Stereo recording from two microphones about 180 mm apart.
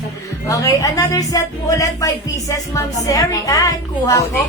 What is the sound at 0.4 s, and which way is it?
Speech, 20° left (ahead or behind).